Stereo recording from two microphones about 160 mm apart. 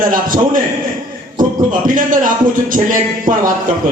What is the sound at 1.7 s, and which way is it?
A man's voice, 55° right (ahead or behind).